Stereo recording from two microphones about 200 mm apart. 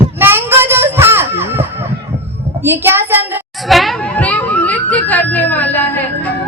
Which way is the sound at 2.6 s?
10° right (ahead or behind).